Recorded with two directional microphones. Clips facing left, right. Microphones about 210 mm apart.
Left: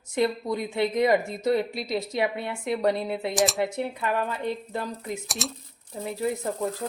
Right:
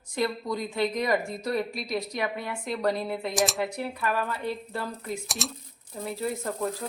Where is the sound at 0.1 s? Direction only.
25° left (ahead or behind).